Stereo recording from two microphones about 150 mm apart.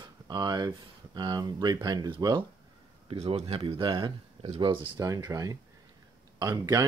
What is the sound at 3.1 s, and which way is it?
Speech, 40° right (ahead or behind).